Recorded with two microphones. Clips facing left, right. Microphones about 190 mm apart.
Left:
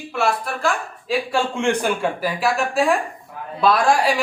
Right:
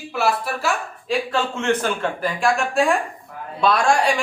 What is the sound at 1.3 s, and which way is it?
A man's voice, 15° left (ahead or behind).